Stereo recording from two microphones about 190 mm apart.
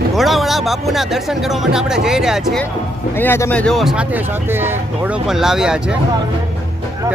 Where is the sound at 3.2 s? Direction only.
10° left (ahead or behind); by 6.0 s 5° right (ahead or behind).